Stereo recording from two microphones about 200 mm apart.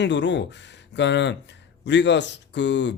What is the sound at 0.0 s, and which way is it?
Speech, 60° left (ahead or behind).